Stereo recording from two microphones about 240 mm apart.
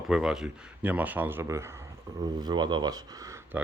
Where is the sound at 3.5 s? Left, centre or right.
Centre.